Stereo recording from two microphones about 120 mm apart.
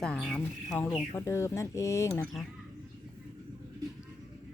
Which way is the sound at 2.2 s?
5° left (ahead or behind).